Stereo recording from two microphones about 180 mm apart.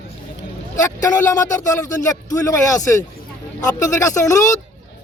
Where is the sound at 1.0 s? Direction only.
20° left (ahead or behind).